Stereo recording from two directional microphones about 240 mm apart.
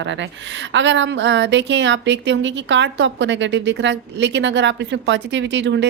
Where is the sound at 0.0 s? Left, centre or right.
Right.